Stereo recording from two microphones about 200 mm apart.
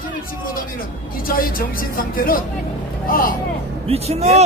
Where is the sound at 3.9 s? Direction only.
30° right (ahead or behind).